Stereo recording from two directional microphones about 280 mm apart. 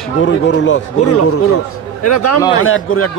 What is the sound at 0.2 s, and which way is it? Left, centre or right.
A man's voice, left.